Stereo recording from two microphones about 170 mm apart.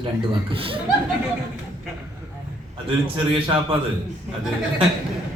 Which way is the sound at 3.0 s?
30° right (ahead or behind).